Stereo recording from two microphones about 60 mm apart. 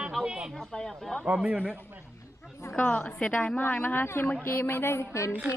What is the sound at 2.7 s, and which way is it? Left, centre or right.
Speech, left.